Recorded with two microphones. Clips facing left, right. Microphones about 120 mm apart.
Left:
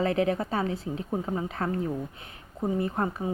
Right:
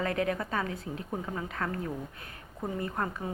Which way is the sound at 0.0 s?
30° left (ahead or behind).